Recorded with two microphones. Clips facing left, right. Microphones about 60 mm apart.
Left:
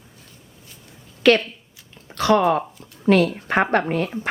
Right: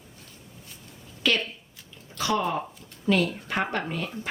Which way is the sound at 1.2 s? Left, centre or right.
Left.